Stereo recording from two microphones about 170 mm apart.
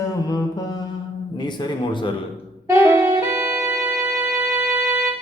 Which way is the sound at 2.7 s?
15° right (ahead or behind).